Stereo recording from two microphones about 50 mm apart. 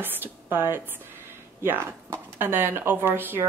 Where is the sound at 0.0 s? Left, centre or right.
Right.